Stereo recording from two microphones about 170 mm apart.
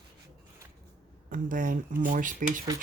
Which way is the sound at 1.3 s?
50° right (ahead or behind).